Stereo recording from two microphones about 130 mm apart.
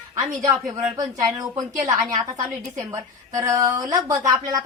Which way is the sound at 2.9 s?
25° right (ahead or behind).